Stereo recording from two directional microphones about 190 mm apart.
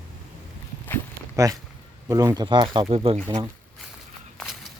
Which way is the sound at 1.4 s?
15° right (ahead or behind).